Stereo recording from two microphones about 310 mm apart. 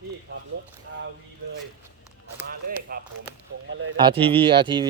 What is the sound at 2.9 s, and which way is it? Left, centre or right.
Speech, right.